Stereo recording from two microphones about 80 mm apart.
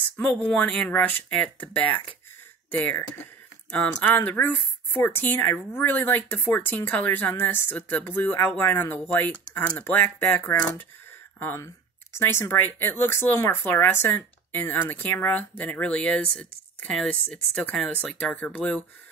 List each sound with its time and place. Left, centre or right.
0.2 s speech: centre
17.9 s speech: left